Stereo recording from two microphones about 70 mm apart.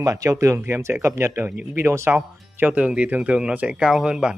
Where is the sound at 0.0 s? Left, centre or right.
Right.